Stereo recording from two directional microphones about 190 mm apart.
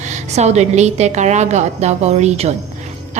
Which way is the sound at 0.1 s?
35° right (ahead or behind).